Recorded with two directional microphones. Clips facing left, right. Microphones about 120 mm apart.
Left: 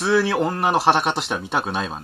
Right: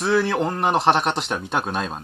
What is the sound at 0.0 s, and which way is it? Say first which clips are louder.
A man's voice: left 1 dB; centre (ahead or behind).